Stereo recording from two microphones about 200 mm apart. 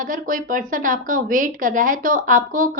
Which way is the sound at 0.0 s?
40° right (ahead or behind).